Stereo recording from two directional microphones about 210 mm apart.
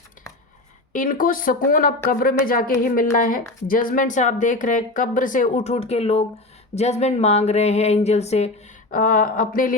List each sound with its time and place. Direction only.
0.9 s a woman's voice: 40° left (ahead or behind)